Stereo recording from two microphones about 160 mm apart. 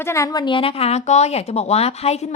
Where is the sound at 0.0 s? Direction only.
20° left (ahead or behind).